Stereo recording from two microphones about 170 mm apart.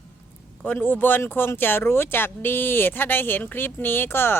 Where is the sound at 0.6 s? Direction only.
10° left (ahead or behind).